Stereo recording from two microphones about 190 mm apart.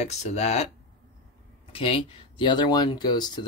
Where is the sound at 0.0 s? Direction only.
35° left (ahead or behind).